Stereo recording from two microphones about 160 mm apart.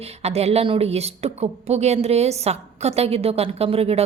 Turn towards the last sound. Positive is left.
turn(degrees=-40)  # may be behind; listen again after turning